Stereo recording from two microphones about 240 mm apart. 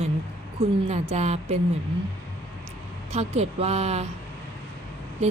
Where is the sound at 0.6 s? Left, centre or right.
Right.